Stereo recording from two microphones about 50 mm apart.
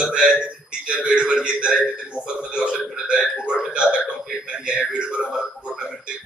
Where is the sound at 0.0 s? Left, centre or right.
Centre.